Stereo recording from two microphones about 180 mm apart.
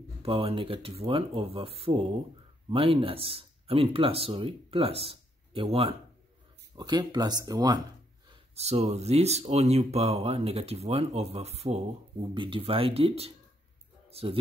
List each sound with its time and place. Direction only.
0.2 s speech: 30° right (ahead or behind)
8.3 s speech: 35° right (ahead or behind)